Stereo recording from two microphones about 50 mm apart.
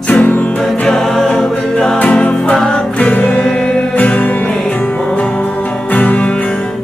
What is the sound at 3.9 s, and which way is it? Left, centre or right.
Music, left.